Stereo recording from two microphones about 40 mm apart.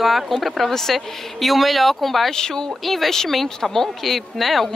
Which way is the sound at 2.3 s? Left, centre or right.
Centre.